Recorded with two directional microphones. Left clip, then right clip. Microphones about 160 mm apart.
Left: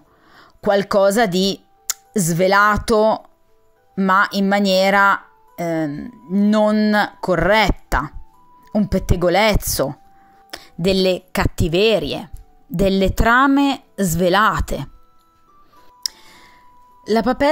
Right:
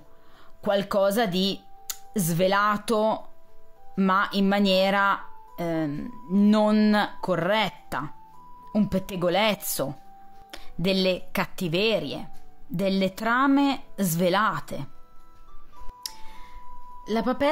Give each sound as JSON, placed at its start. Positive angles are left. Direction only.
{"t": 0.4, "sound": "speech", "side_deg": 35}
{"t": 5.9, "sound": "speech", "side_deg": 15}
{"t": 6.9, "sound": "speech", "side_deg": 30}
{"t": 16.0, "sound": "music", "side_deg": 40}